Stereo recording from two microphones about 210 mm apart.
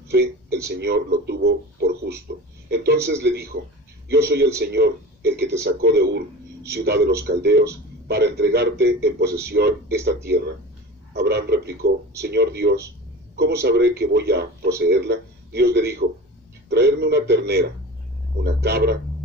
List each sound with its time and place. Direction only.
0.1 s a sound: 55° right (ahead or behind)
0.7 s a man's voice: 50° right (ahead or behind)
4.6 s speech: 50° right (ahead or behind)
9.2 s a man's voice: 15° right (ahead or behind)
9.5 s speech: 50° right (ahead or behind)